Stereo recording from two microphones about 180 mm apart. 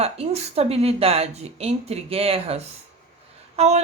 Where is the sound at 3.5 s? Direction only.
35° right (ahead or behind).